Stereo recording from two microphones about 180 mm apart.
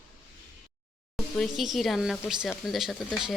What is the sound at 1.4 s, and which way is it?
A woman's voice, centre (ahead or behind).